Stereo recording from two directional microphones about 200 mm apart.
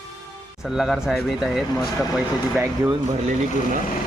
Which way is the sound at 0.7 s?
Centre (ahead or behind).